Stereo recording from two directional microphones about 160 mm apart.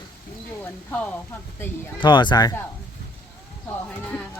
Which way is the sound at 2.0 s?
30° left (ahead or behind).